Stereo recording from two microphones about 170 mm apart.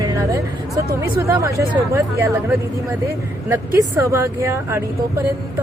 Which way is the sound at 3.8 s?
15° right (ahead or behind).